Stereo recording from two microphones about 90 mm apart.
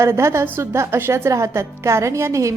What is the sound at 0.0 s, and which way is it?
A woman's voice, 30° right (ahead or behind).